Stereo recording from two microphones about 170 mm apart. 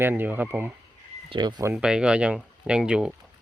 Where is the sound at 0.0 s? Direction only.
10° right (ahead or behind).